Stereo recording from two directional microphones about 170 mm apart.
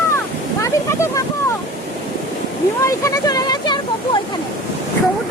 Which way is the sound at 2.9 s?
20° left (ahead or behind).